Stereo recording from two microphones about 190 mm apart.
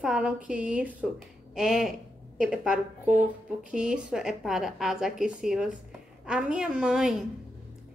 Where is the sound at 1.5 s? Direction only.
5° right (ahead or behind).